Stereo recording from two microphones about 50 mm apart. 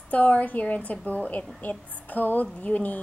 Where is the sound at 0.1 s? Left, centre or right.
Left.